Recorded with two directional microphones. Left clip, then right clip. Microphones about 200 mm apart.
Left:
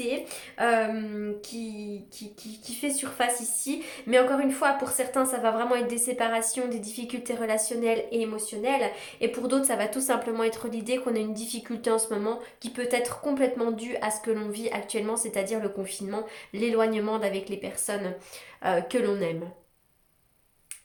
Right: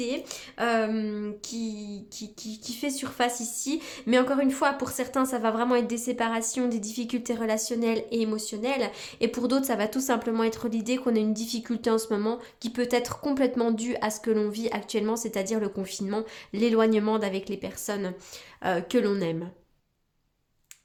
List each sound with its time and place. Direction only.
0.0 s speech: 45° right (ahead or behind)